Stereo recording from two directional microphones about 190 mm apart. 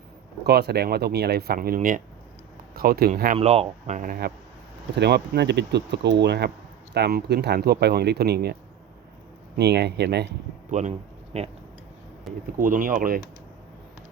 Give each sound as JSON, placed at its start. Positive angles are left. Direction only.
{"t": 0.4, "sound": "speech", "side_deg": -60}
{"t": 3.3, "sound": "speech", "side_deg": -30}
{"t": 4.9, "sound": "speech", "side_deg": -60}
{"t": 9.6, "sound": "speech", "side_deg": -60}
{"t": 10.7, "sound": "speech", "side_deg": -40}
{"t": 12.5, "sound": "speech", "side_deg": -45}